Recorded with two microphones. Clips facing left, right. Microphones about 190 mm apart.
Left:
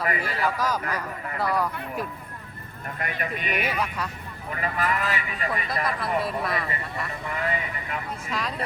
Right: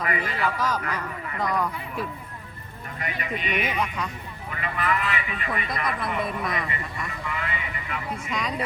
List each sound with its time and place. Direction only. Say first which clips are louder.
0.0 s speech: even; 40° left (ahead or behind)
0.4 s speech: left 1 dB; 10° left (ahead or behind)
3.0 s speech: even; 50° left (ahead or behind)
3.8 s speech: right 1 dB; 5° left (ahead or behind)
4.5 s speech: even; 40° left (ahead or behind)
6.2 s speech: left 1 dB; centre (ahead or behind)
7.3 s speech: left 5 dB; 40° left (ahead or behind)
8.3 s speech: even; centre (ahead or behind)